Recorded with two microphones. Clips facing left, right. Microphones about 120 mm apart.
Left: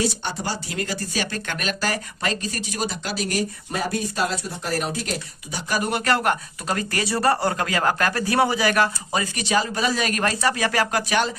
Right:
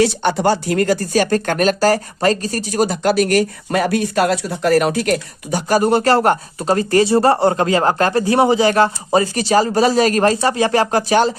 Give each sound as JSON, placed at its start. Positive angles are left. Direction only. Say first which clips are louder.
{"t": 0.0, "sound": "speech", "louder": "right 11 dB", "side_deg": -70}